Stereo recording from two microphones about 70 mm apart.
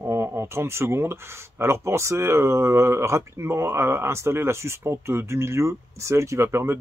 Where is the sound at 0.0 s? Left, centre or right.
Right.